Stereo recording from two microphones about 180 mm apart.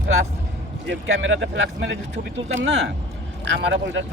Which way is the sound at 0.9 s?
90° right.